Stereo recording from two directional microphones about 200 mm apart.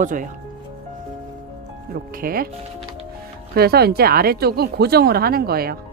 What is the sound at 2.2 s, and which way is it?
Speech, 45° right (ahead or behind).